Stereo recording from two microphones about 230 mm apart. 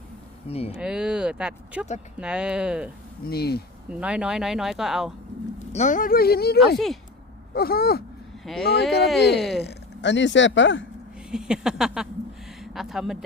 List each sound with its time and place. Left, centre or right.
0.4 s speech: left
0.8 s speech: centre
3.2 s a sound: left
3.8 s speech: centre
5.5 s speech: left
6.7 s speech: centre
7.5 s a sound: left
8.4 s speech: centre
9.6 s speech: left
11.3 s speech: centre
12.5 s a sound: centre